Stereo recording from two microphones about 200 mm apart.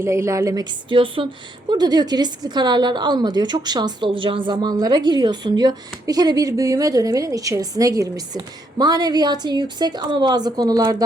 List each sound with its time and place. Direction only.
0.0 s a woman's voice: 15° right (ahead or behind)